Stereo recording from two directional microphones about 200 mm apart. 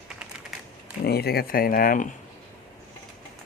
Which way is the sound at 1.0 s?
50° left (ahead or behind).